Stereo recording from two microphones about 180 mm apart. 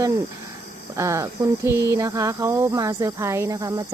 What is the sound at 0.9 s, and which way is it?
Speech, 15° right (ahead or behind).